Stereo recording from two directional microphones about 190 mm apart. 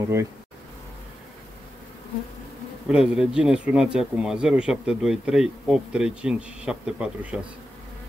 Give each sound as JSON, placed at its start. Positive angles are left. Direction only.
{"t": 0.0, "sound": "speech", "side_deg": -15}
{"t": 2.9, "sound": "speech", "side_deg": -5}